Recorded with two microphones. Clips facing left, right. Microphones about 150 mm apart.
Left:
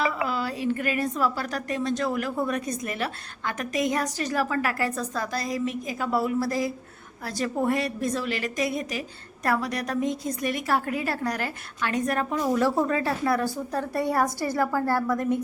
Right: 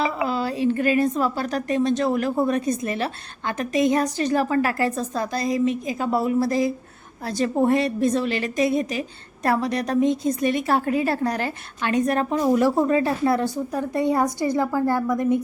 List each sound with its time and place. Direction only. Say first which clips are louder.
0.0 s a woman's voice: right 3 dB; 25° right (ahead or behind)